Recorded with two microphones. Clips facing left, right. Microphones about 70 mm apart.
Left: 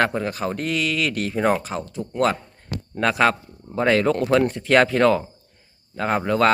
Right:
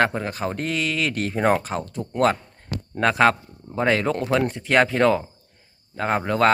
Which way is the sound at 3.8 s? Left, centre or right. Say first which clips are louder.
Left 2 dB; right.